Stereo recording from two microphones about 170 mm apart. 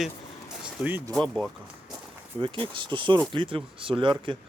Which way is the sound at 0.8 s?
10° right (ahead or behind).